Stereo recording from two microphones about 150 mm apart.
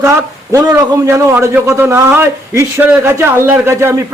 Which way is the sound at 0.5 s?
20° right (ahead or behind).